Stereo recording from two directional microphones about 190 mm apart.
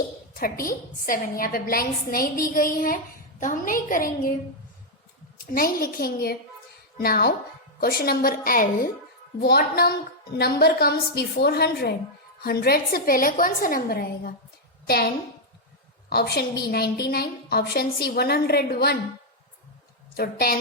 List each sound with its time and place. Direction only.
0.3 s a woman's voice: 50° left (ahead or behind)
5.5 s a woman's voice: 50° left (ahead or behind)
16.0 s a woman's voice: 55° left (ahead or behind)
20.1 s a woman's voice: 55° left (ahead or behind)